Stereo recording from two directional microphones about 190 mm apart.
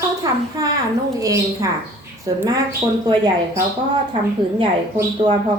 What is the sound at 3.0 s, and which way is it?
Speech, 20° right (ahead or behind).